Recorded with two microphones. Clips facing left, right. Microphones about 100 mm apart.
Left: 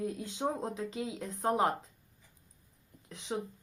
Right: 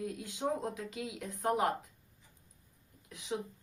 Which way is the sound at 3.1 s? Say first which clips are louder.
Even; 30° left (ahead or behind).